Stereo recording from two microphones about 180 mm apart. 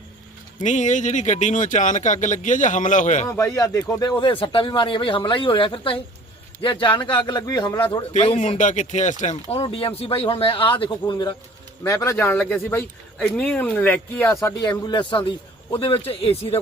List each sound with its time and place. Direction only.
0.6 s speech: 45° left (ahead or behind)
3.2 s speech: 15° left (ahead or behind)
8.3 s speech: 40° left (ahead or behind)
9.3 s a man's voice: 30° left (ahead or behind)